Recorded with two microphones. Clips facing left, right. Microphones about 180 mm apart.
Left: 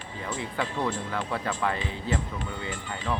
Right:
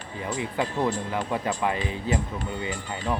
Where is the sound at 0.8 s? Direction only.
40° right (ahead or behind).